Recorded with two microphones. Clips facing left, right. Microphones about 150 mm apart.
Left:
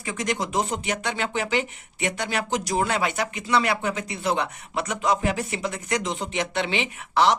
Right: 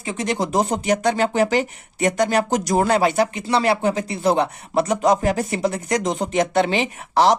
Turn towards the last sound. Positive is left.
turn(degrees=-40)  # may be behind; listen again after turning